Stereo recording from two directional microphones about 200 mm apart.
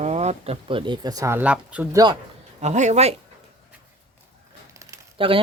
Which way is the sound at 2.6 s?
35° right (ahead or behind).